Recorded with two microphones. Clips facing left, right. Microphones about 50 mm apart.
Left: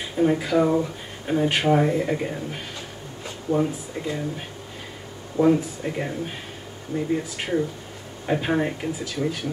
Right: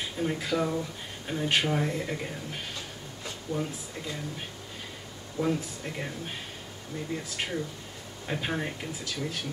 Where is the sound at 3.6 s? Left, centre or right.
Left.